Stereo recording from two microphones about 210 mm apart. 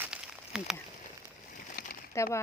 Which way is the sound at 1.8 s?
50° left (ahead or behind).